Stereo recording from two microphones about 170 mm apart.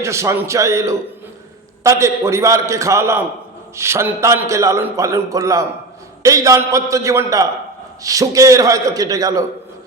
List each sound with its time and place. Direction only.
0.0 s a man's voice: 15° right (ahead or behind)